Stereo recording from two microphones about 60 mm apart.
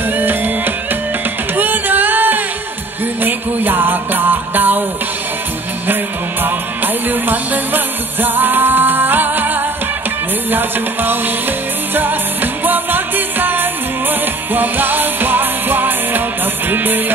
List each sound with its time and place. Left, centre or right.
0.1 s music: right
6.4 s music: right